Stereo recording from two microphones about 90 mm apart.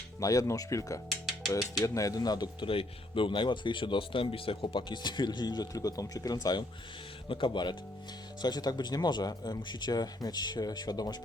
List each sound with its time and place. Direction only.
0.2 s speech: 40° left (ahead or behind)
1.1 s music: centre (ahead or behind)
1.8 s speech: 35° left (ahead or behind)
2.6 s speech: 75° left (ahead or behind); by 6.7 s 50° left (ahead or behind)
7.3 s speech: 65° left (ahead or behind); by 11.2 s 50° left (ahead or behind)